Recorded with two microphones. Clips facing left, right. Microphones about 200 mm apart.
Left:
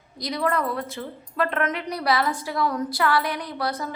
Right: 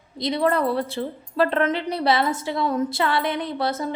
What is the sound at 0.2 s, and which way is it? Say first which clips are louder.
A woman's voice: right 4 dB; 25° right (ahead or behind).